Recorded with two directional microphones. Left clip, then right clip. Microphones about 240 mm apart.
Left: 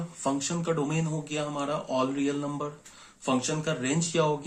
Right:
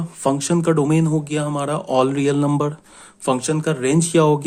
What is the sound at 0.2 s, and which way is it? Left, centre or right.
Speech, right.